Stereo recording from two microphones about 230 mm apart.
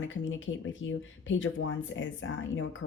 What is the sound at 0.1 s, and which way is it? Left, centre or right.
Speech, left.